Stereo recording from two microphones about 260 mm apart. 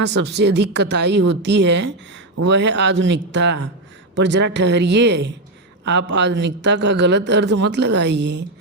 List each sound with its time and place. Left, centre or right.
0.0 s a woman's voice: right